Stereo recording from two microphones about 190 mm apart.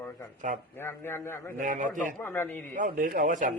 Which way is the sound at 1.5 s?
40° right (ahead or behind).